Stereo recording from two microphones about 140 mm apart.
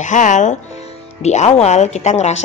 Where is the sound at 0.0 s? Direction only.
60° left (ahead or behind).